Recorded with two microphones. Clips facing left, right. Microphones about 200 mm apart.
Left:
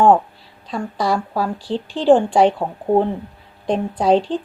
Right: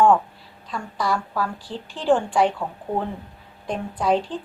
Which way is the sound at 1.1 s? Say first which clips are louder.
Left 5 dB; 35° left (ahead or behind).